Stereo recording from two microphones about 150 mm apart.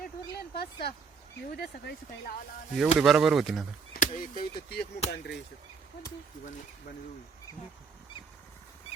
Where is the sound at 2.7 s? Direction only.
5° right (ahead or behind).